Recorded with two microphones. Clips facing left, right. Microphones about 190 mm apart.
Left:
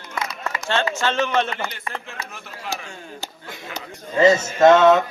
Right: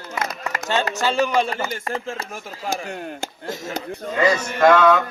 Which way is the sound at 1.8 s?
45° right (ahead or behind).